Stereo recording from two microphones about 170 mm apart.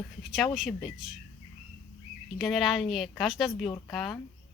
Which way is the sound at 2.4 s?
Centre (ahead or behind).